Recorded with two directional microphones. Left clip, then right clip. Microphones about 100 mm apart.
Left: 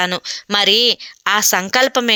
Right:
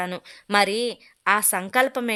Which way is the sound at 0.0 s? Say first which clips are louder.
Left 11 dB; 30° left (ahead or behind).